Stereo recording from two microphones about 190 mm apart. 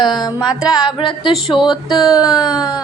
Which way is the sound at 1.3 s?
Centre (ahead or behind).